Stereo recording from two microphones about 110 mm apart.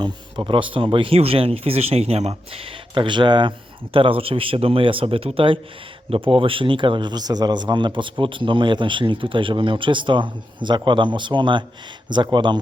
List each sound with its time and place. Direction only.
0.0 s speech: 45° right (ahead or behind)
3.9 s speech: 55° right (ahead or behind)